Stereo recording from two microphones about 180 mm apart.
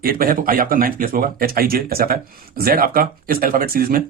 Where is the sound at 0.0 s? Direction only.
55° right (ahead or behind).